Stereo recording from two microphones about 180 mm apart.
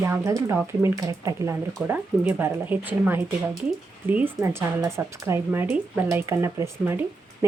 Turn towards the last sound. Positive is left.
turn(degrees=-15)  # may be behind; listen again after turning